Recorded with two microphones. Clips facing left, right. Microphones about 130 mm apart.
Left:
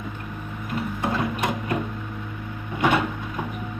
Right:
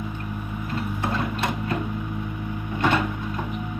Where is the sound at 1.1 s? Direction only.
15° left (ahead or behind).